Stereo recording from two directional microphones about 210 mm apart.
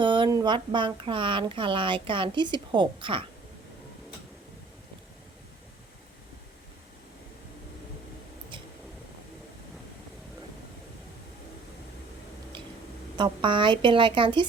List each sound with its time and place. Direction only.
0.0 s speech: 25° right (ahead or behind)
13.1 s speech: 20° right (ahead or behind)